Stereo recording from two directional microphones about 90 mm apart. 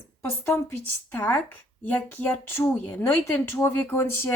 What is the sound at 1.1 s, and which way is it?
Speech, 20° left (ahead or behind).